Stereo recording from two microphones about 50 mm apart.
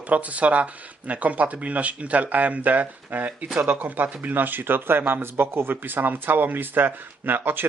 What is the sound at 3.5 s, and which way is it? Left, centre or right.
Speech, right.